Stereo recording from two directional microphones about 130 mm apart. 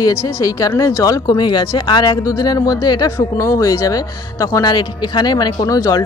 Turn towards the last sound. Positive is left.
turn(degrees=30)  # may be behind; listen again after turning